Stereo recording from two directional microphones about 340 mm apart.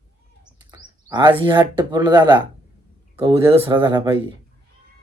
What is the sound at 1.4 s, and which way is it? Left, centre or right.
Speech, centre.